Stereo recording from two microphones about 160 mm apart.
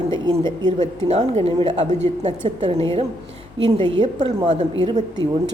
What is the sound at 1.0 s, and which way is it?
A woman's voice, 40° right (ahead or behind).